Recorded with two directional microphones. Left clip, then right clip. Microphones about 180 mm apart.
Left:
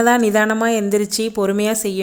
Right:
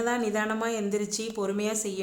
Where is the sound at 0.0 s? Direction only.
45° left (ahead or behind).